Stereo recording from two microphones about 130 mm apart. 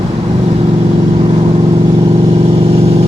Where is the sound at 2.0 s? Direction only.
40° right (ahead or behind).